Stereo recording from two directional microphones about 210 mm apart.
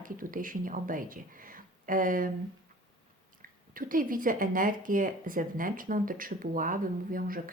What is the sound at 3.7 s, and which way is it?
A woman's voice, 40° right (ahead or behind).